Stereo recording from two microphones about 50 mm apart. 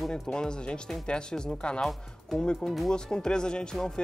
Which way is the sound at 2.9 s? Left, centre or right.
Centre.